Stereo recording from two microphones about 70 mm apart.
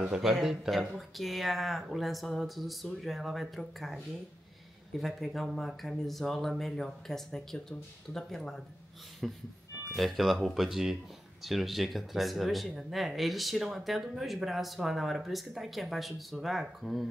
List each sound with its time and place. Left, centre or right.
0.0 s speech: centre